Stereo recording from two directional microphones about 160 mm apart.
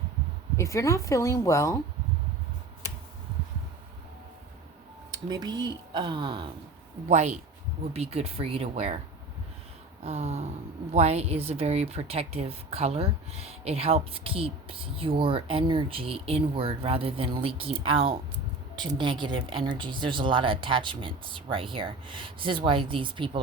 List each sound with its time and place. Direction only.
0.5 s speech: 20° left (ahead or behind)
5.1 s speech: 25° right (ahead or behind)
7.9 s speech: 40° right (ahead or behind)
10.0 s speech: 40° right (ahead or behind)